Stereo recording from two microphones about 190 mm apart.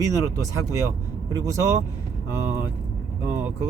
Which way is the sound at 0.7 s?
15° right (ahead or behind).